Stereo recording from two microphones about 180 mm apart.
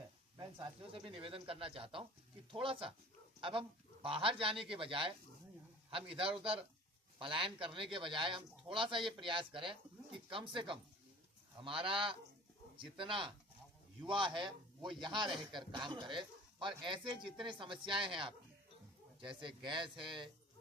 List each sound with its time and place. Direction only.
0.3 s a man's voice: 25° right (ahead or behind)
19.4 s a man's voice: 25° right (ahead or behind)